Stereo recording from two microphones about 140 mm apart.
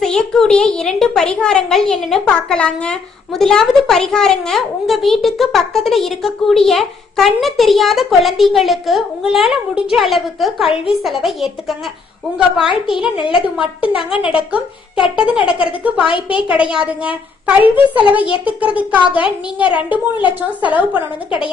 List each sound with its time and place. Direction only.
0.0 s a woman's voice: 5° left (ahead or behind)
13.1 s a woman's voice: 35° left (ahead or behind)
14.1 s a woman's voice: 5° right (ahead or behind)